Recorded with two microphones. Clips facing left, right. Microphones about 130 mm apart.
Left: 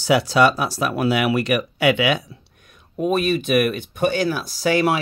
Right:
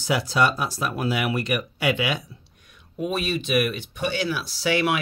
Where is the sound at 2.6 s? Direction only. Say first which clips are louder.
Left 6 dB; 45° left (ahead or behind).